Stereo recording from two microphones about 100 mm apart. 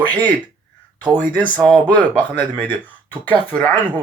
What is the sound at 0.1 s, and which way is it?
Speech, 15° left (ahead or behind).